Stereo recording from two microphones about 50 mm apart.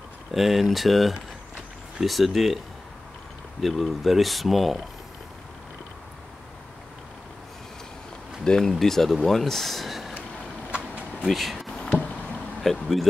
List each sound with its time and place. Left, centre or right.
0.3 s speech: centre
3.6 s speech: centre
8.5 s speech: centre
11.2 s speech: centre